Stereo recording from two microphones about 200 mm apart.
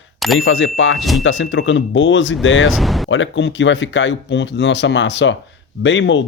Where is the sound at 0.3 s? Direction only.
75° left (ahead or behind).